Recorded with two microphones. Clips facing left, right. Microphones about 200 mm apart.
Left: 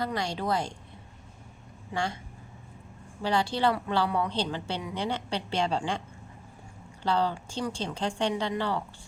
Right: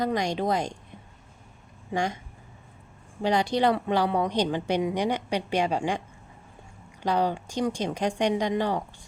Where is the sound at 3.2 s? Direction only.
20° right (ahead or behind).